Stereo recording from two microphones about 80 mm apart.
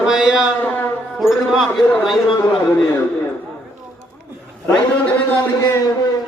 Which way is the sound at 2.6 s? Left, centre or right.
Left.